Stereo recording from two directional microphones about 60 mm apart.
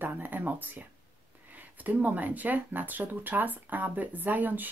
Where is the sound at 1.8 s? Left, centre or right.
Right.